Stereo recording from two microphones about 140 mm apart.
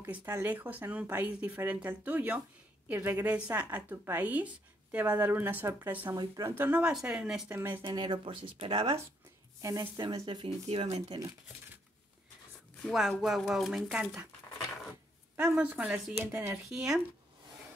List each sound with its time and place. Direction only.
0.1 s speech: 15° right (ahead or behind)
6.1 s speech: 30° right (ahead or behind)
6.5 s speech: 10° right (ahead or behind)
7.4 s speech: 15° right (ahead or behind)
7.8 s speech: 35° right (ahead or behind)
9.6 s speech: 25° right (ahead or behind)
12.8 s speech: 5° left (ahead or behind)
15.3 s speech: 10° right (ahead or behind)
16.3 s speech: 20° right (ahead or behind)
16.6 s speech: 5° right (ahead or behind)